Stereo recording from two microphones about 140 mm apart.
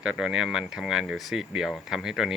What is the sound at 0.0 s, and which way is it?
Speech, 5° right (ahead or behind).